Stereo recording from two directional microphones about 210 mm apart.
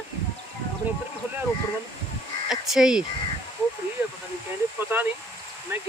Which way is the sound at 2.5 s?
Centre (ahead or behind).